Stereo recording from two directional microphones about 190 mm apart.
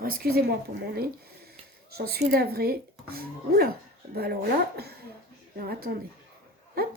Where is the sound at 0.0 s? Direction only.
50° right (ahead or behind).